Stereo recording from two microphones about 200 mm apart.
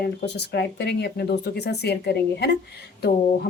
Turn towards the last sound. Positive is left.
turn(degrees=50)  # may be behind; listen again after turning